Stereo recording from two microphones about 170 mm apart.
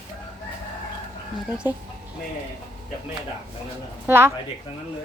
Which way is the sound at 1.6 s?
20° left (ahead or behind).